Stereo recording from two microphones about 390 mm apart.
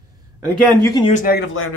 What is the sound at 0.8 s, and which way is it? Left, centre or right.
Speech, centre.